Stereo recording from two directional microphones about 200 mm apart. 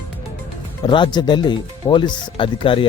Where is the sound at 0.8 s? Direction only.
25° left (ahead or behind).